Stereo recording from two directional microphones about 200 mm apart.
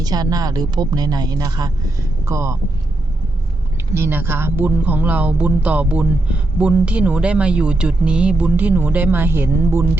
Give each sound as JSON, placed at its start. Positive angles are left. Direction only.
{"t": 0.0, "sound": "speech", "side_deg": -20}
{"t": 3.9, "sound": "speech", "side_deg": -10}